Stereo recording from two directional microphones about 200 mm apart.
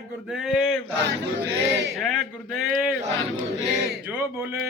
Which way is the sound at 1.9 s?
Centre (ahead or behind).